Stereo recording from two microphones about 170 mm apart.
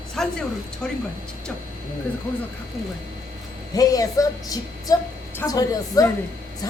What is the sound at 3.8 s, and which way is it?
Speech, 20° left (ahead or behind).